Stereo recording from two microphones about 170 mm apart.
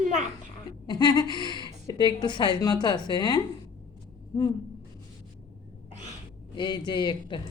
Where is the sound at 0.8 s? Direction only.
25° left (ahead or behind).